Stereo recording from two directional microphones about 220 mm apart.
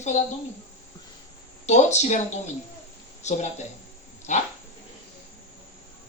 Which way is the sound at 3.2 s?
30° left (ahead or behind).